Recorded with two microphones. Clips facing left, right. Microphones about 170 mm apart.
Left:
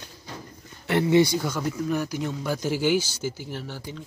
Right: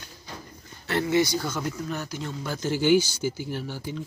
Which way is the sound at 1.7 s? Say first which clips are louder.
Left 5 dB; 10° left (ahead or behind).